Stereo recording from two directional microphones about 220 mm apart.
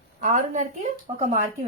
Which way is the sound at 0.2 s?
35° right (ahead or behind).